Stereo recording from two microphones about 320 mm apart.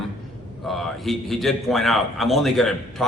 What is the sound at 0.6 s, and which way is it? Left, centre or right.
A man's voice, centre.